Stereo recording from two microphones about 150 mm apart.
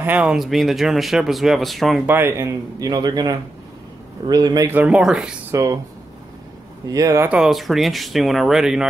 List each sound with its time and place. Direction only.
0.0 s speech: 10° right (ahead or behind)
2.0 s speech: 15° right (ahead or behind)
4.6 s speech: 10° right (ahead or behind)
5.5 s speech: 20° right (ahead or behind)
6.9 s speech: 20° right (ahead or behind)
7.2 s speech: 5° right (ahead or behind)